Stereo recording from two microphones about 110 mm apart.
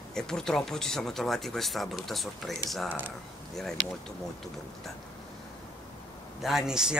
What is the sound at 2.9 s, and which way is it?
Speech, 15° right (ahead or behind).